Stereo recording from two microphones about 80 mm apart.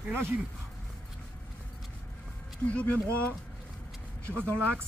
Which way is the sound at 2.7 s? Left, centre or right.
Centre.